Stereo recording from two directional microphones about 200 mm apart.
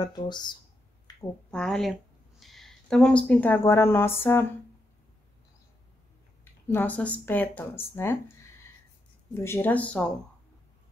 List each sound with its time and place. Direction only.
0.0 s speech: 20° left (ahead or behind)
1.1 s a sound: 20° left (ahead or behind)
1.5 s speech: centre (ahead or behind)
6.7 s speech: 10° left (ahead or behind)